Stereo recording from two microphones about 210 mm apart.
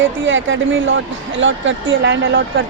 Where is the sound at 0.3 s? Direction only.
65° right (ahead or behind).